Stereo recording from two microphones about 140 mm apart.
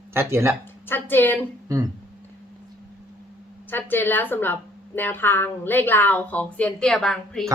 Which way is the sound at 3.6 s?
15° left (ahead or behind).